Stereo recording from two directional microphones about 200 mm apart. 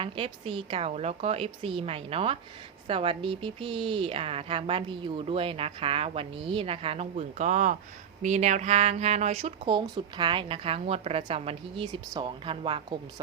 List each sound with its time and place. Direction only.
0.0 s a woman's voice: 25° right (ahead or behind)